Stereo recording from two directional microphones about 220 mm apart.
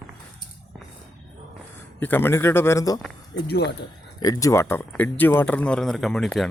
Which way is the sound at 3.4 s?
50° left (ahead or behind).